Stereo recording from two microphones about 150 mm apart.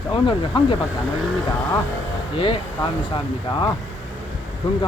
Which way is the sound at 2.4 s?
35° left (ahead or behind).